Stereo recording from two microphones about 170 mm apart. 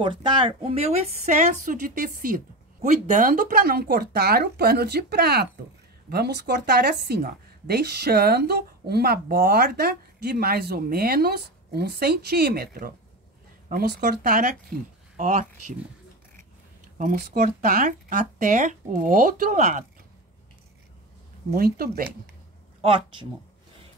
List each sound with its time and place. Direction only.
0.0 s a woman's voice: 30° right (ahead or behind); by 15.4 s 50° right (ahead or behind)
17.0 s speech: 55° right (ahead or behind)
21.5 s speech: 60° right (ahead or behind)
22.8 s speech: 30° right (ahead or behind)